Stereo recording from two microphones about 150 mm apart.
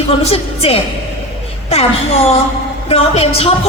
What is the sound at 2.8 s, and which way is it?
Speech, 40° left (ahead or behind).